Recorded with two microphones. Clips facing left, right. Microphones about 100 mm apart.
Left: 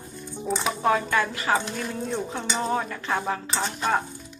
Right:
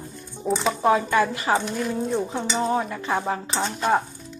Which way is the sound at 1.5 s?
5° right (ahead or behind).